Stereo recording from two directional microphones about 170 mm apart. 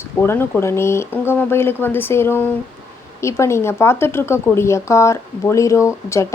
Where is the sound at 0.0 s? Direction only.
15° left (ahead or behind).